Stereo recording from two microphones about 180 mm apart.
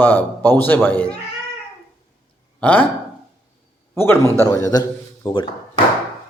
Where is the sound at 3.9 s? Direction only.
15° left (ahead or behind).